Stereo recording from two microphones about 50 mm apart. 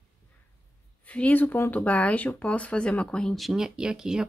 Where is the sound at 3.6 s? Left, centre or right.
Centre.